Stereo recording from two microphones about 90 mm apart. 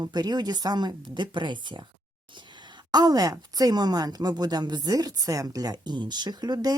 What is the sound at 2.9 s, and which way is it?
Speech, 50° right (ahead or behind).